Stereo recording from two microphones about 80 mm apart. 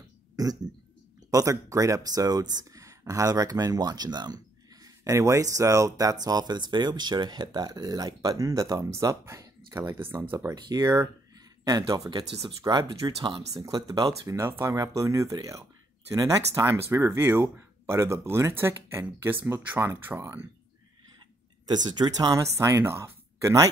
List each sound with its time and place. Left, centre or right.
1.3 s speech: right
4.8 s speech: right
10.5 s speech: right
12.1 s speech: right
12.6 s speech: right
13.5 s speech: right
14.3 s speech: right
21.6 s speech: right